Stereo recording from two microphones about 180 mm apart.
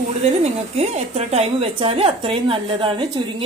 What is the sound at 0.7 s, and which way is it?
A woman's voice, 35° right (ahead or behind).